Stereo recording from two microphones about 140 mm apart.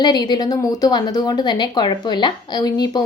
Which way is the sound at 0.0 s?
30° left (ahead or behind).